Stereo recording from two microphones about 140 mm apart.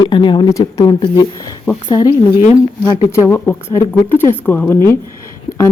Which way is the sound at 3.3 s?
15° left (ahead or behind).